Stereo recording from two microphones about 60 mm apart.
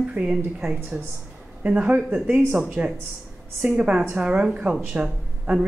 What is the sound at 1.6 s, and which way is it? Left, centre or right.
Speech, right.